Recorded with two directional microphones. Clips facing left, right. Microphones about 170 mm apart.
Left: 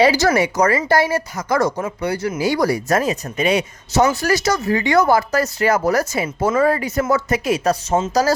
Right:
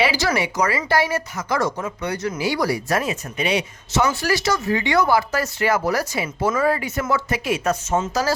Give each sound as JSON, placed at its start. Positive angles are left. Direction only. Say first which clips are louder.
{"t": 0.0, "sound": "speech", "louder": "left 6 dB", "side_deg": 45}
{"t": 1.8, "sound": "speech", "louder": "left 4 dB", "side_deg": 30}
{"t": 2.4, "sound": "speech", "louder": "left 4 dB", "side_deg": 45}
{"t": 8.1, "sound": "speech", "louder": "left 7 dB", "side_deg": 40}